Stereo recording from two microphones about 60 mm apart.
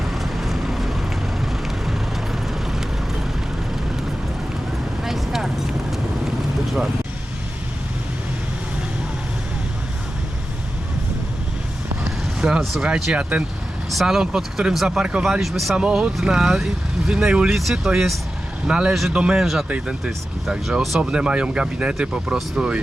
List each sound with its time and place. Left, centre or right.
0.1 s vehicle: centre
5.0 s vehicle: centre
12.4 s vehicle: centre
12.8 s speech: centre
13.9 s speech: centre
14.9 s speech: centre
15.2 s speech: centre
15.7 s speech: centre
18.7 s speech: centre
19.4 s speech: centre
19.6 s speech: right
20.1 s speech: centre
21.0 s speech: centre